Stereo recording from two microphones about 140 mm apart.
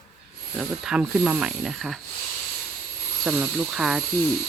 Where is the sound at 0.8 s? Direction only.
5° right (ahead or behind).